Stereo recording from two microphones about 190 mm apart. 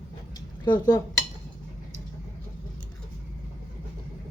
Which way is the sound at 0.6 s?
20° left (ahead or behind).